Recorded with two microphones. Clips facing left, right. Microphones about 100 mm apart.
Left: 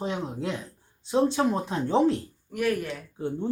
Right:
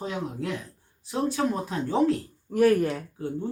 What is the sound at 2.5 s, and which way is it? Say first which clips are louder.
Speech: right 7 dB; 35° right (ahead or behind).